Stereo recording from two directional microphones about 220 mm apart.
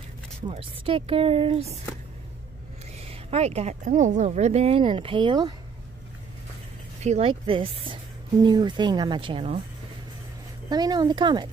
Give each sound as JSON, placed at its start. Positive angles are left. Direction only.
{"t": 0.5, "sound": "speech", "side_deg": -25}
{"t": 3.0, "sound": "speech", "side_deg": -30}
{"t": 7.0, "sound": "speech", "side_deg": -30}
{"t": 10.7, "sound": "speech", "side_deg": -20}